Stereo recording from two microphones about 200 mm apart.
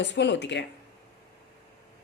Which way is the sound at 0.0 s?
60° left (ahead or behind).